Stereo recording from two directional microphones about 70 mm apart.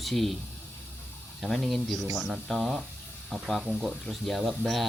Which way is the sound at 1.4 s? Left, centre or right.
Centre.